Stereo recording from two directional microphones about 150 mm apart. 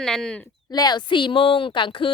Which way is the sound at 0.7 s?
25° left (ahead or behind).